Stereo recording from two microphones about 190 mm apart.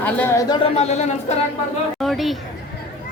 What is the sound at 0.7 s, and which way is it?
Speech, 35° left (ahead or behind).